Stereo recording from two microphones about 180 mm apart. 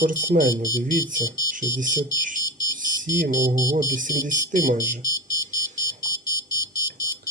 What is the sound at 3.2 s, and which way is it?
Speech, 50° right (ahead or behind).